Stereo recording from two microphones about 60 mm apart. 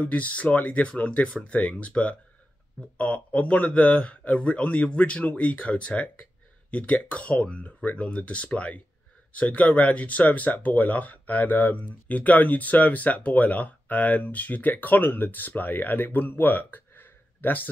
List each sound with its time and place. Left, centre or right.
0.0 s speech: left